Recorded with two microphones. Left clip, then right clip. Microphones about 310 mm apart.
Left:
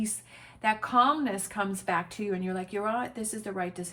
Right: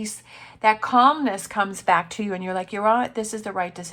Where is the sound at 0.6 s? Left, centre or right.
Centre.